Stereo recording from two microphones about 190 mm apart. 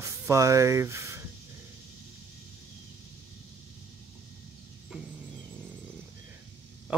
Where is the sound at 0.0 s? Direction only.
15° right (ahead or behind).